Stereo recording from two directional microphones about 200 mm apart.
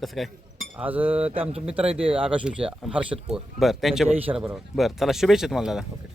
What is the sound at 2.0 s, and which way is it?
Speech, 25° right (ahead or behind).